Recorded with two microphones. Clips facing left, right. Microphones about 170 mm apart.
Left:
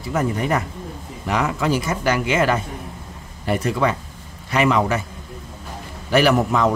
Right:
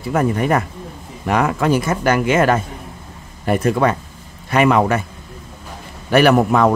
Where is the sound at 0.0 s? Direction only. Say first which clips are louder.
Right 4 dB; 55° right (ahead or behind).